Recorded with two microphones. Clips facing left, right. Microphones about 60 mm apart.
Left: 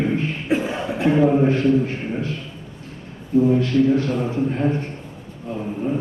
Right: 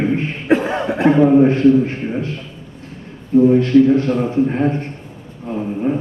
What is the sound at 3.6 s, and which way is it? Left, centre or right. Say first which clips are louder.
A man's voice: right 6 dB; right.